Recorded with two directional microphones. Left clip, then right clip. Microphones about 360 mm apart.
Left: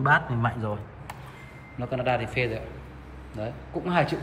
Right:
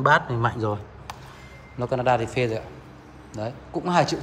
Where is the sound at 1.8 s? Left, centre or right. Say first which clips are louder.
Right 5 dB; centre.